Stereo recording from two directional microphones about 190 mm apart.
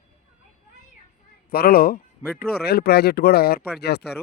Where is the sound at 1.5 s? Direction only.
50° left (ahead or behind).